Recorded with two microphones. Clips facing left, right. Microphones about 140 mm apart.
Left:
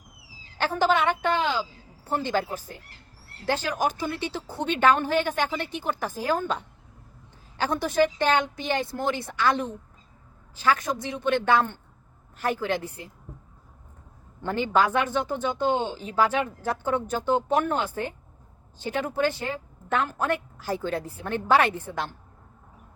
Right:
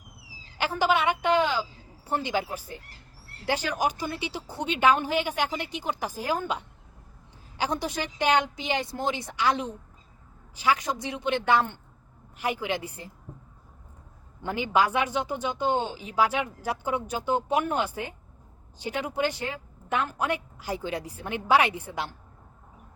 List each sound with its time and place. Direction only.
0.6 s a woman's voice: 10° right (ahead or behind)
7.6 s a woman's voice: 15° right (ahead or behind)
14.4 s a woman's voice: 10° right (ahead or behind)